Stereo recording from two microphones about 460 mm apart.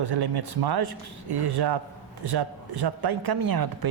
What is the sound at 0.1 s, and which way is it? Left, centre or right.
Speech, right.